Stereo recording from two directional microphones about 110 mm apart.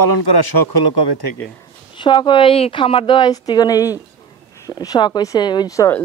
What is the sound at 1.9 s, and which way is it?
Speech, 45° left (ahead or behind).